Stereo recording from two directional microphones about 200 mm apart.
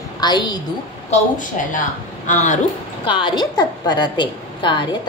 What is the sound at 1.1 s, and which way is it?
A woman's voice, 40° left (ahead or behind).